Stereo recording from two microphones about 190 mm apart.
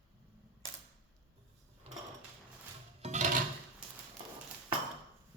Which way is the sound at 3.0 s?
40° right (ahead or behind).